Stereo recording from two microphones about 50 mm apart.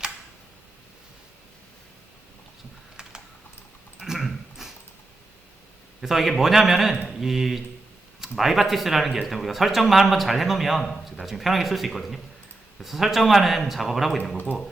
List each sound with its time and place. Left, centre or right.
4.0 s dog: centre
6.0 s a man's voice: centre
14.3 s speech: left